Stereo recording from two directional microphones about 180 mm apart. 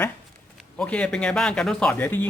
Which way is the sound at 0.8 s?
5° left (ahead or behind).